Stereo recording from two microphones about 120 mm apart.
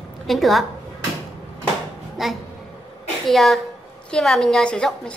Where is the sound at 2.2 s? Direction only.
Centre (ahead or behind).